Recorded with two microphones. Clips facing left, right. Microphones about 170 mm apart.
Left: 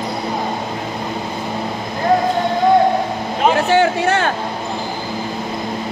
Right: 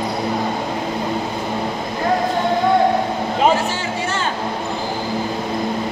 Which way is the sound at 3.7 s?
60° left (ahead or behind).